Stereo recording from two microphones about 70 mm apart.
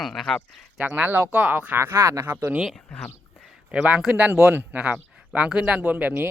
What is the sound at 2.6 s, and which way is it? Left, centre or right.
Speech, centre.